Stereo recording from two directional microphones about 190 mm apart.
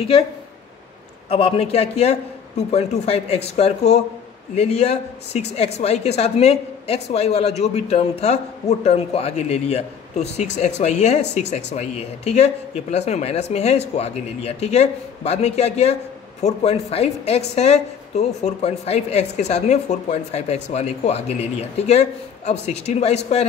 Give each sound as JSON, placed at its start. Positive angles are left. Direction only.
{"t": 1.3, "sound": "a woman's voice", "side_deg": 30}